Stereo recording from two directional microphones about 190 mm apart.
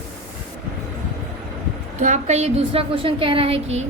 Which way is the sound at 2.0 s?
40° right (ahead or behind).